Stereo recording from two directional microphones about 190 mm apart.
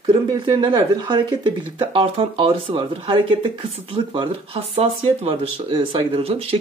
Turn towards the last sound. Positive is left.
turn(degrees=-30)  # may be behind; listen again after turning